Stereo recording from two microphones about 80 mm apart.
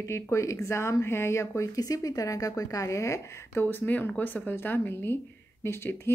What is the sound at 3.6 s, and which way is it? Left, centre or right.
Speech, left.